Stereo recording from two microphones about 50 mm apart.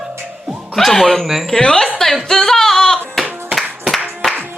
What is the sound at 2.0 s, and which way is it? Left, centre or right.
Singing, centre.